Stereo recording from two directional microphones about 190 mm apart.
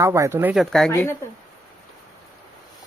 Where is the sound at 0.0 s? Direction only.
15° right (ahead or behind).